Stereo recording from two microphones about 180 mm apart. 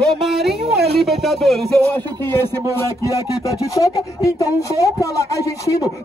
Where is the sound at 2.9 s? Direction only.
20° left (ahead or behind).